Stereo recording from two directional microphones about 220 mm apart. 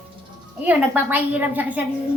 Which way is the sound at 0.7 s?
10° right (ahead or behind).